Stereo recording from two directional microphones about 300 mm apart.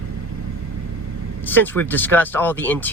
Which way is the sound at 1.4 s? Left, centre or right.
Centre.